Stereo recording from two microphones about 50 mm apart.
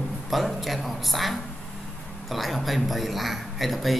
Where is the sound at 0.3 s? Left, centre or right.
Centre.